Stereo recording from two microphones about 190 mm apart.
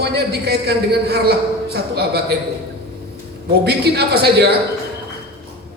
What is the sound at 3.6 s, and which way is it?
Speech, 60° right (ahead or behind).